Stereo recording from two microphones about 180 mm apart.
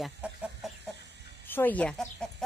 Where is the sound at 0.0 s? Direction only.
Centre (ahead or behind).